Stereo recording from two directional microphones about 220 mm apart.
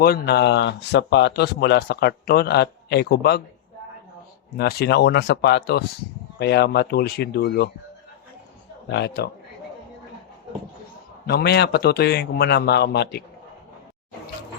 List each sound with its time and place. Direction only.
0.0 s speech: 45° left (ahead or behind)
4.5 s speech: 45° left (ahead or behind)
8.9 s speech: 50° left (ahead or behind)
11.3 s speech: 50° left (ahead or behind)